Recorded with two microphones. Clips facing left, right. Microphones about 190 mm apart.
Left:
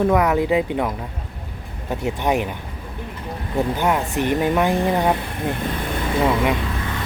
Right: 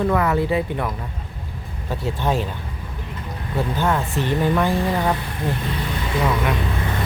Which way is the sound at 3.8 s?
15° left (ahead or behind).